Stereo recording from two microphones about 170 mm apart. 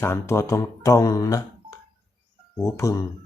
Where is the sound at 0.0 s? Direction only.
15° left (ahead or behind).